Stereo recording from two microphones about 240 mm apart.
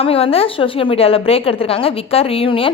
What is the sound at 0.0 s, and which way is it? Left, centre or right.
A woman's voice, left.